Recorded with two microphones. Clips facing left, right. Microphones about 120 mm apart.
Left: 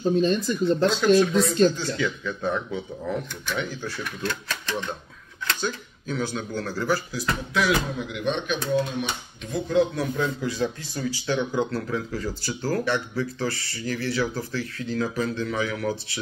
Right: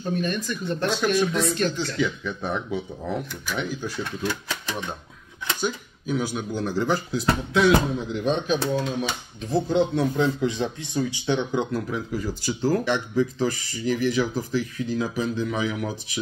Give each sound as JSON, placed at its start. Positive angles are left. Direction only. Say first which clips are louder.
{"t": 0.1, "sound": "speech", "louder": "left 2 dB", "side_deg": 25}
{"t": 2.0, "sound": "speech", "louder": "right 1 dB", "side_deg": -15}